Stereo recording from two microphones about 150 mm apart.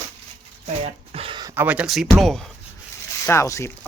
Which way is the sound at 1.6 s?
5° right (ahead or behind).